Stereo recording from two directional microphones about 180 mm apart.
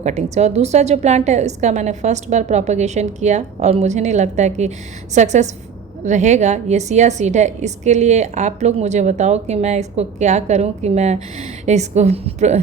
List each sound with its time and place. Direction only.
0.0 s a woman's voice: 40° right (ahead or behind)